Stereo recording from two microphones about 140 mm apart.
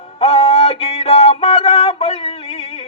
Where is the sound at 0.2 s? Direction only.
45° left (ahead or behind).